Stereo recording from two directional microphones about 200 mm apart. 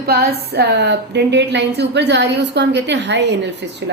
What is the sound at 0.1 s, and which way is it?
A woman's voice, 55° right (ahead or behind).